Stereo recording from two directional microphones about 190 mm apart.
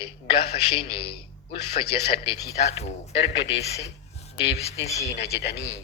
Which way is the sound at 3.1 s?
70° left (ahead or behind).